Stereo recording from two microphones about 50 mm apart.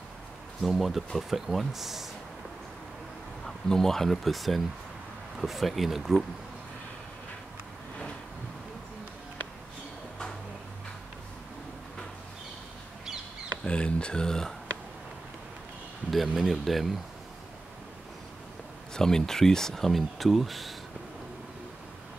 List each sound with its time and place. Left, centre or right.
0.6 s speech: centre
3.4 s speech: centre
13.7 s speech: left
16.1 s speech: centre
18.9 s speech: centre